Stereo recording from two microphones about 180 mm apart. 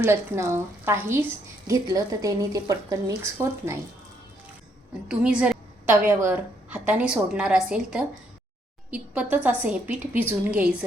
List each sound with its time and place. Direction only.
0.0 s a woman's voice: 15° right (ahead or behind)
5.0 s a woman's voice: 5° right (ahead or behind)